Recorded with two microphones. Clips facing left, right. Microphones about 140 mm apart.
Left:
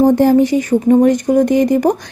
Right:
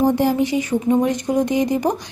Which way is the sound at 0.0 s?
45° left (ahead or behind).